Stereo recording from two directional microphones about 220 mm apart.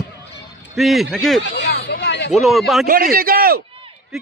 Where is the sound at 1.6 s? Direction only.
50° left (ahead or behind).